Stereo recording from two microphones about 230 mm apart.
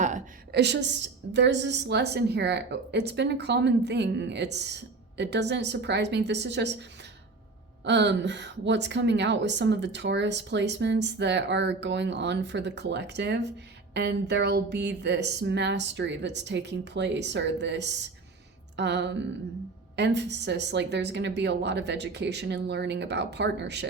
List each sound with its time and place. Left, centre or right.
0.5 s a woman's voice: right
7.9 s a woman's voice: right